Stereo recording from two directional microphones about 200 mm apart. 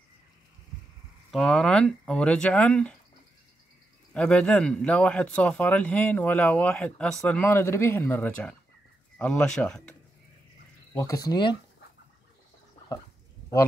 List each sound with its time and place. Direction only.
1.3 s speech: centre (ahead or behind)
4.1 s speech: 5° left (ahead or behind)
11.0 s speech: 15° left (ahead or behind)